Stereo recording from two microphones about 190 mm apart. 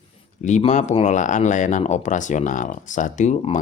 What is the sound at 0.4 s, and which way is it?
Speech, 40° left (ahead or behind).